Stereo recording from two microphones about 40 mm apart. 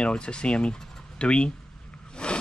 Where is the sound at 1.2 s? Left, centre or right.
Left.